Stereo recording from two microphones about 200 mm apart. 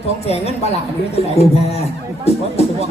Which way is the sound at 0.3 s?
30° left (ahead or behind).